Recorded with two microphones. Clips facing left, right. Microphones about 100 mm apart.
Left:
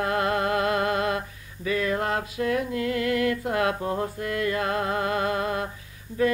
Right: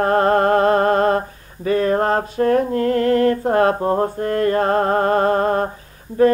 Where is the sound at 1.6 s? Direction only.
40° right (ahead or behind).